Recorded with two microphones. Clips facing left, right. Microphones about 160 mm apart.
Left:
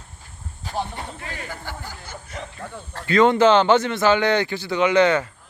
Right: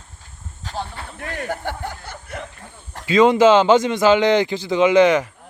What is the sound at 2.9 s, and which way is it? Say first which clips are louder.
A man's voice: right 2 dB; 15° right (ahead or behind).